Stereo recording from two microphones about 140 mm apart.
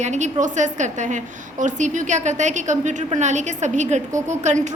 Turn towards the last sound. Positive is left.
turn(degrees=-55)  # may be behind; listen again after turning